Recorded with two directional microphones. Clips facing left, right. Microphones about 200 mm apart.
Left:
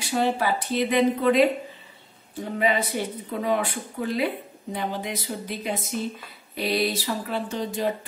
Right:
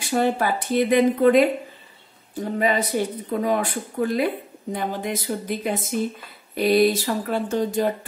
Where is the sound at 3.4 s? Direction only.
45° right (ahead or behind).